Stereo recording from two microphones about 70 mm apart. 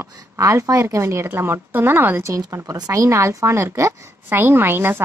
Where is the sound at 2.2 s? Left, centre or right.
Right.